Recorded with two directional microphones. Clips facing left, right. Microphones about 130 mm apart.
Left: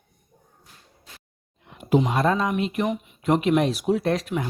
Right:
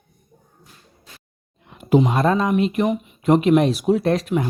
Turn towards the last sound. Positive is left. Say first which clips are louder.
# right 4 dB
turn(degrees=-35)  # may be behind; listen again after turning